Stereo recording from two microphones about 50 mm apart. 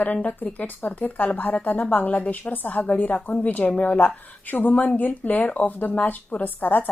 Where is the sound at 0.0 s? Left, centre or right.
Left.